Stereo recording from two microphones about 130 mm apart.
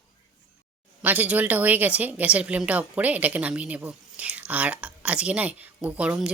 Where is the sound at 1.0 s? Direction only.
15° right (ahead or behind).